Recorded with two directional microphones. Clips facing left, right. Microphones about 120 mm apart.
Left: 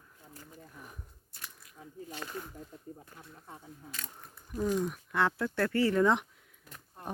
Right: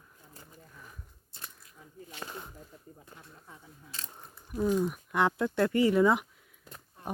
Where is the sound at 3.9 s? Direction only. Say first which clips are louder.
Right 3 dB; 30° right (ahead or behind).